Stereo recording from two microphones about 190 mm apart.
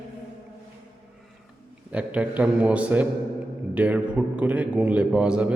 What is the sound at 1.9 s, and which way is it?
A man's voice, 5° right (ahead or behind).